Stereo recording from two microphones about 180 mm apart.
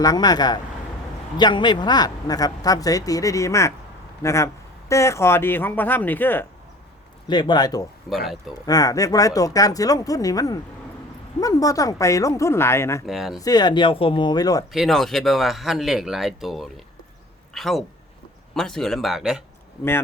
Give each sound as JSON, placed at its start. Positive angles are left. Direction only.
{"t": 0.0, "sound": "a man's voice", "side_deg": 20}
{"t": 7.3, "sound": "speech", "side_deg": 25}
{"t": 8.1, "sound": "speech", "side_deg": 0}
{"t": 8.6, "sound": "speech", "side_deg": 20}
{"t": 13.1, "sound": "speech", "side_deg": 0}
{"t": 13.4, "sound": "speech", "side_deg": 20}
{"t": 14.7, "sound": "speech", "side_deg": 0}